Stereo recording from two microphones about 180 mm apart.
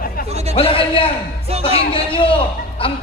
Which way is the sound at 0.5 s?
30° left (ahead or behind).